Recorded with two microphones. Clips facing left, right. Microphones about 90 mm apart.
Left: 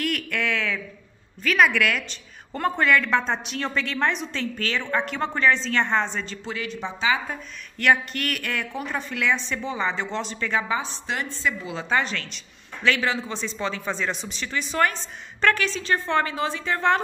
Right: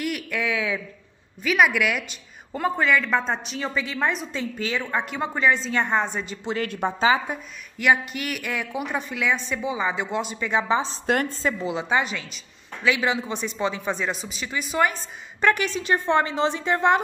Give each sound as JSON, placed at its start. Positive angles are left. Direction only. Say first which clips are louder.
{"t": 0.0, "sound": "a sound", "louder": "even", "side_deg": -5}
{"t": 1.4, "sound": "a woman's voice", "louder": "even", "side_deg": -10}
{"t": 6.6, "sound": "speech", "louder": "right 6 dB", "side_deg": -50}
{"t": 7.2, "sound": "a woman's voice", "louder": "right 2 dB", "side_deg": -10}
{"t": 11.1, "sound": "speech", "louder": "right 5 dB", "side_deg": -45}
{"t": 11.6, "sound": "a woman's voice", "louder": "right 2 dB", "side_deg": -15}